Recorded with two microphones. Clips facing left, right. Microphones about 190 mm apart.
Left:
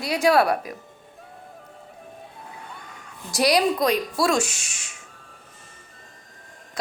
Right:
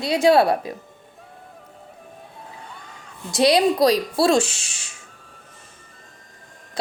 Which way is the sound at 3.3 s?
25° right (ahead or behind).